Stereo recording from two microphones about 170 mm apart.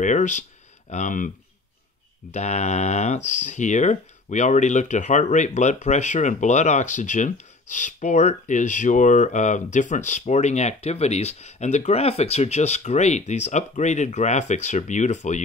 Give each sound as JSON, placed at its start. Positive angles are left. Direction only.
{"t": 0.0, "sound": "speech", "side_deg": 45}
{"t": 2.3, "sound": "speech", "side_deg": 40}